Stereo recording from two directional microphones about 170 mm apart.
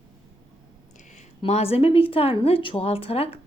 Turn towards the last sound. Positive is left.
turn(degrees=35)  # may be behind; listen again after turning